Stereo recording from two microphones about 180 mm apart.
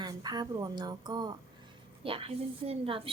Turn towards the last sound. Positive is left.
turn(degrees=-30)  # may be behind; listen again after turning